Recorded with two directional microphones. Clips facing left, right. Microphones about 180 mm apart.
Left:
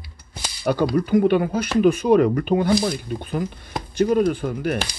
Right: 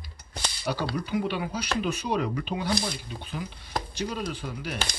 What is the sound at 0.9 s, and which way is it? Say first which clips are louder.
Speech: left 11 dB; 50° left (ahead or behind).